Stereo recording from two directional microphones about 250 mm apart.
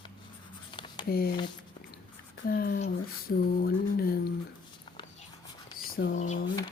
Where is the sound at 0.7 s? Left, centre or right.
Centre.